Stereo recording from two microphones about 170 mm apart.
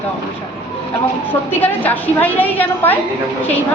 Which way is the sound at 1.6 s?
10° left (ahead or behind).